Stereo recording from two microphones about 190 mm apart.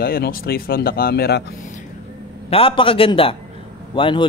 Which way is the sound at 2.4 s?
30° left (ahead or behind).